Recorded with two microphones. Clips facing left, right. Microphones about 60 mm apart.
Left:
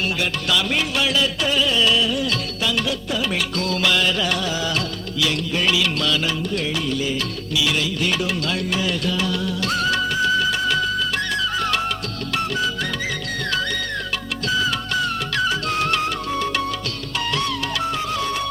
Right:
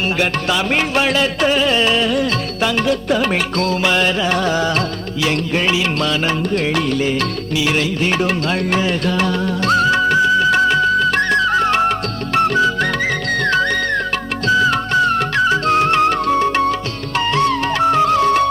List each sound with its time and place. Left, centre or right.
0.4 s music: right
3.7 s music: right